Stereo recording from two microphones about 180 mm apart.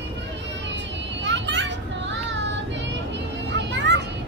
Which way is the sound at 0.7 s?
80° right.